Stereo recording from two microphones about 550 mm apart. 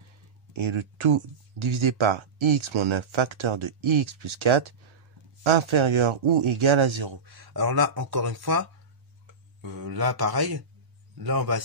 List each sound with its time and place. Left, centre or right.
0.5 s speech: right